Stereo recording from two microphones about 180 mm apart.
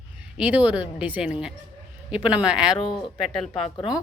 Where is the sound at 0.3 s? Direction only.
5° right (ahead or behind).